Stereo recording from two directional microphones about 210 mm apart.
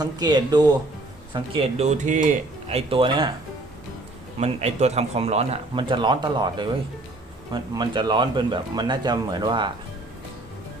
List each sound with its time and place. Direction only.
0.0 s speech: 20° right (ahead or behind)
1.3 s speech: 30° right (ahead or behind)
4.4 s speech: 30° right (ahead or behind)